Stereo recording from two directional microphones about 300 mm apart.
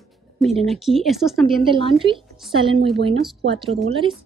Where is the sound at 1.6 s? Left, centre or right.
Centre.